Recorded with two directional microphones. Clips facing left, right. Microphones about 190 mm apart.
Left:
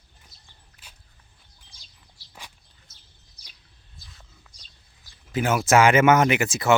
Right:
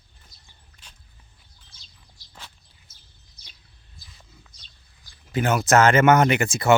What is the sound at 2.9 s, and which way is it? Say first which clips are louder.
Bird: left 1 dB; 30° right (ahead or behind).